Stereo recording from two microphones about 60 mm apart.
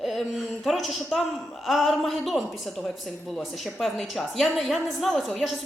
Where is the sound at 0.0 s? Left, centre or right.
Centre.